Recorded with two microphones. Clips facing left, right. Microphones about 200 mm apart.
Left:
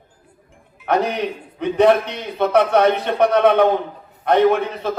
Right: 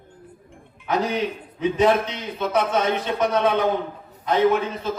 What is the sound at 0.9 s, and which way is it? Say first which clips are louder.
A man's voice: left 3 dB; 65° left (ahead or behind).